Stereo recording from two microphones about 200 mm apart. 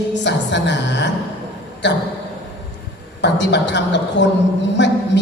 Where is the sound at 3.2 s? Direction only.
60° left (ahead or behind).